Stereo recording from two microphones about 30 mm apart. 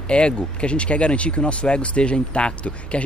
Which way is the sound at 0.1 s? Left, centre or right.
Left.